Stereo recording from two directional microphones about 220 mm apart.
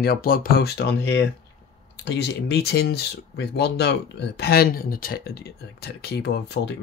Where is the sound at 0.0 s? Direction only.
40° left (ahead or behind).